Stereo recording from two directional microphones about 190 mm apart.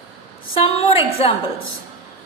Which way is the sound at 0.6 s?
30° left (ahead or behind).